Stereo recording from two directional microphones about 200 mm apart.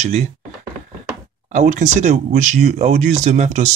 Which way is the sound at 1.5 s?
35° right (ahead or behind).